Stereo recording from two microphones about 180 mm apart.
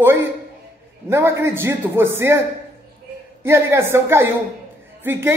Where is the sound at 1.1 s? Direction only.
15° right (ahead or behind).